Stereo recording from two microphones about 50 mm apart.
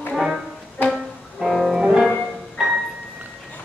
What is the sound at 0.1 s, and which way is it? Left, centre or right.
Music, centre.